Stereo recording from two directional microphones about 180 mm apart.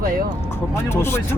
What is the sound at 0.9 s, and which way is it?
Speech, 15° left (ahead or behind).